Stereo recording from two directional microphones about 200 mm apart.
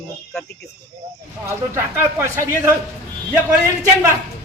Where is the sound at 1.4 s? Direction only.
15° right (ahead or behind).